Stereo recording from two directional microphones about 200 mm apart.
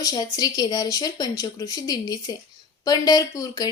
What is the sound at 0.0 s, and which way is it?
A woman's voice, 20° left (ahead or behind).